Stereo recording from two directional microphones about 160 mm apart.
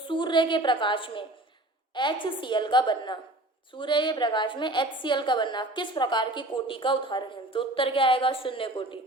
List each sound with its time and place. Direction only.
0.1 s a woman's voice: 30° left (ahead or behind)